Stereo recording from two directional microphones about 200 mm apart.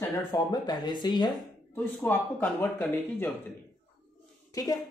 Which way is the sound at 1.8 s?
10° left (ahead or behind).